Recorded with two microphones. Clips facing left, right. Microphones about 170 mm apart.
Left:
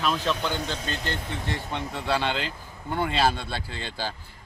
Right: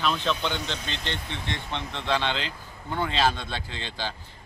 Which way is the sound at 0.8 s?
45° left (ahead or behind).